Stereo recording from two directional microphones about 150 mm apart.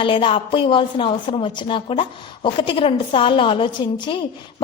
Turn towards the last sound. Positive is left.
turn(degrees=35)  # may be behind; listen again after turning